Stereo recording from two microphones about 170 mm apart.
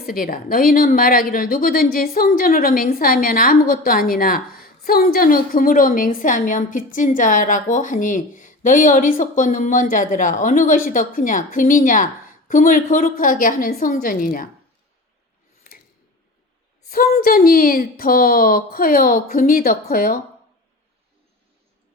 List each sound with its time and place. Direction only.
0.0 s a woman's voice: 55° left (ahead or behind)
16.9 s speech: 60° left (ahead or behind)